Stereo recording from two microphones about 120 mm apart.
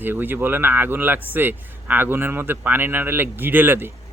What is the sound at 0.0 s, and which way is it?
Speech, 15° right (ahead or behind).